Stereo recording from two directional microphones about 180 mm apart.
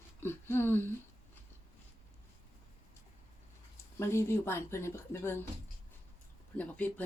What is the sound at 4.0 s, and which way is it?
Speech, 15° left (ahead or behind).